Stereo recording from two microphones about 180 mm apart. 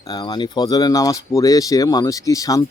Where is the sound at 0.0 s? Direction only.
20° left (ahead or behind).